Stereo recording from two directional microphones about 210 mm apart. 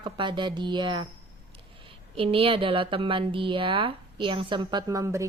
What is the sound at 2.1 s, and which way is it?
Speech, 25° right (ahead or behind).